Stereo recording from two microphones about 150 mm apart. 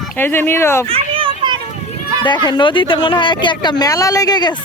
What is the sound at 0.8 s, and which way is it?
Children playing, 40° right (ahead or behind).